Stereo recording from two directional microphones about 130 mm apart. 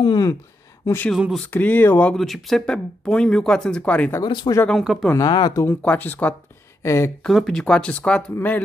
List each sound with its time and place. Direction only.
0.0 s a sound: 35° left (ahead or behind)
0.8 s speech: 15° left (ahead or behind)
1.1 s speech: 5° right (ahead or behind)
1.5 s speech: 15° left (ahead or behind)
2.1 s speech: centre (ahead or behind)
4.2 s speech: 30° left (ahead or behind)
4.6 s speech: centre (ahead or behind)
5.0 s speech: 20° left (ahead or behind)
7.2 s speech: centre (ahead or behind)